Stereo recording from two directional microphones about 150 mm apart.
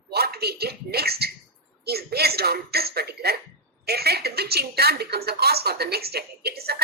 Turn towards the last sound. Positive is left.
turn(degrees=-90)